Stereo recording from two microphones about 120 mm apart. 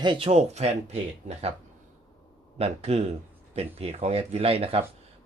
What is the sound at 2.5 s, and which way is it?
Speech, 55° right (ahead or behind).